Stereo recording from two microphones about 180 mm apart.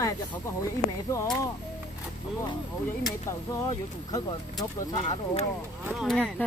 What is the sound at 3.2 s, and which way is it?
Speech, 15° left (ahead or behind).